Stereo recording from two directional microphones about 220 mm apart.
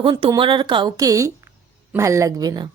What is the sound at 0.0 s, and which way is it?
A woman's voice, 20° right (ahead or behind).